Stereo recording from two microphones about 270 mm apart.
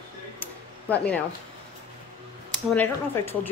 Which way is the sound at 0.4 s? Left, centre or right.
Centre.